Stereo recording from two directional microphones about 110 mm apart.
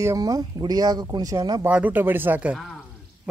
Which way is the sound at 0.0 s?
30° right (ahead or behind).